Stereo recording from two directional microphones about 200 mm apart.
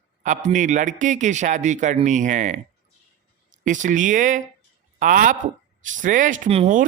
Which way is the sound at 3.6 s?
40° right (ahead or behind).